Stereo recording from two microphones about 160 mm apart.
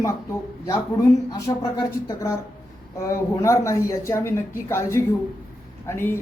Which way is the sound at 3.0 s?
20° left (ahead or behind).